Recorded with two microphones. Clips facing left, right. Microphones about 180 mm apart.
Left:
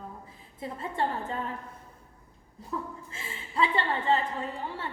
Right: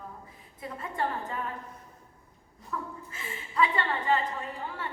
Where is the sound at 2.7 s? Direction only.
30° left (ahead or behind).